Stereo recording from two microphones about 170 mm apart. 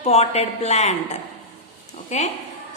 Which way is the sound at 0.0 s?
40° left (ahead or behind).